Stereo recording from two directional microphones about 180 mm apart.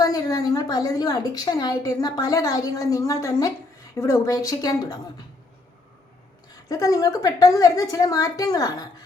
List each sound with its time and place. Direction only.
0.0 s a woman's voice: 20° left (ahead or behind)
6.7 s a woman's voice: 20° left (ahead or behind)